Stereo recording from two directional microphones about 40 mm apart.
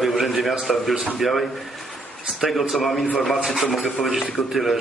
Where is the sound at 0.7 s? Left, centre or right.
Centre.